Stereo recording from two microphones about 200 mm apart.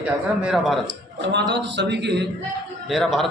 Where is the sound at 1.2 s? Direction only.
60° right (ahead or behind).